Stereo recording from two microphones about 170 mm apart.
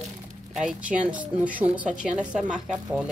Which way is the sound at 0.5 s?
5° right (ahead or behind).